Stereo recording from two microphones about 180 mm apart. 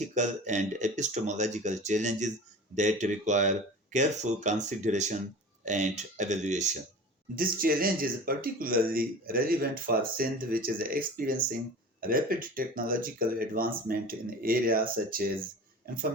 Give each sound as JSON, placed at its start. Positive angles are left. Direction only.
{"t": 0.1, "sound": "speech", "side_deg": -40}
{"t": 7.3, "sound": "speech", "side_deg": -55}